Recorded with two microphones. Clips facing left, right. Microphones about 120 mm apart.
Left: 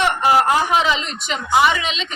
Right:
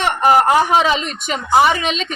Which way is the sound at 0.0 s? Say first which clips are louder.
Right 2 dB; 50° right (ahead or behind).